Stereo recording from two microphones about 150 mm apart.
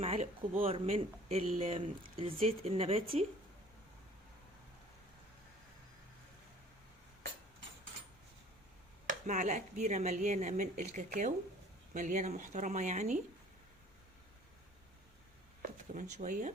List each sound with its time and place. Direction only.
0.0 s speech: 40° right (ahead or behind)
9.0 s speech: 55° right (ahead or behind)
15.6 s speech: 60° right (ahead or behind)